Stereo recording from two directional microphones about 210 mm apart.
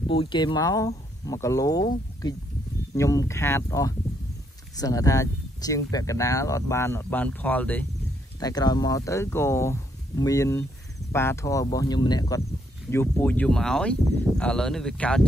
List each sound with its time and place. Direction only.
0.0 s speech: 25° left (ahead or behind)
2.9 s speech: 15° left (ahead or behind)
8.4 s speech: 20° left (ahead or behind)